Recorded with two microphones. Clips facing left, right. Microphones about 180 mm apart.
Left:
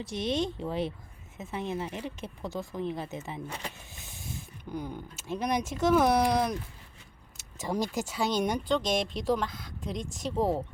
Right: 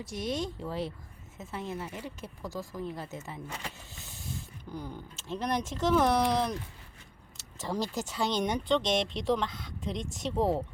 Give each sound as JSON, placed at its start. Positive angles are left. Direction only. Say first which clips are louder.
{"t": 0.1, "sound": "speech", "louder": "left 3 dB", "side_deg": 25}
{"t": 4.7, "sound": "speech", "louder": "left 4 dB", "side_deg": 15}
{"t": 7.6, "sound": "speech", "louder": "left 2 dB", "side_deg": 10}